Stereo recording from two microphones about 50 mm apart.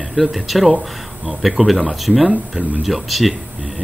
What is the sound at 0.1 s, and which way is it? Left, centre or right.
A man's voice, centre.